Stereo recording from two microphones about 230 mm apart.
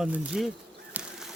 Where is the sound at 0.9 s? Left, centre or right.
Centre.